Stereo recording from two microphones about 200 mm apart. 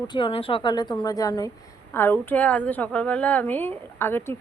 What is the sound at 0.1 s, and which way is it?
A woman's voice, 25° left (ahead or behind).